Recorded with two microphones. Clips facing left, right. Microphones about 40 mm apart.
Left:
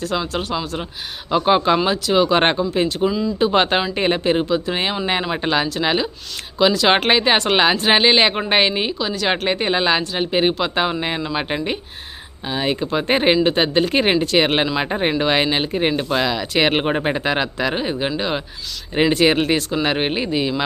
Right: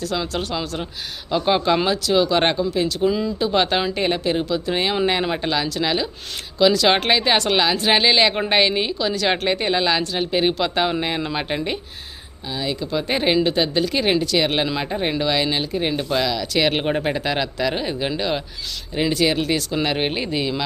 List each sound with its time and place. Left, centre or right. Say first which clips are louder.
0.2 s speech: left 2 dB; centre; by 3.1 s left
3.1 s speech: even; centre
3.3 s speech: left 3 dB; left; by 11.8 s centre
12.5 s speech: left 4 dB; left
12.8 s speech: left 3 dB; left; by 18.4 s centre
18.9 s speech: left 4 dB; left
19.8 s speech: left 2 dB; centre